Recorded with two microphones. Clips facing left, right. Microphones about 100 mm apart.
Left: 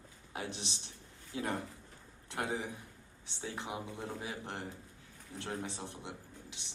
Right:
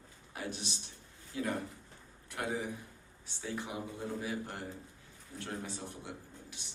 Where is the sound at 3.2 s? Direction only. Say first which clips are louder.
Right 1 dB; 20° left (ahead or behind).